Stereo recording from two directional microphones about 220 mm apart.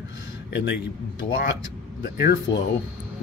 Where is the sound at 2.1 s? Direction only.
45° left (ahead or behind).